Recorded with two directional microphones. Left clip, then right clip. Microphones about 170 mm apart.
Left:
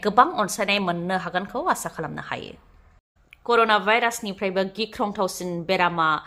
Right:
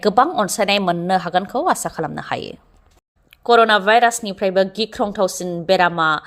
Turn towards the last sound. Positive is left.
turn(degrees=-20)  # may be behind; listen again after turning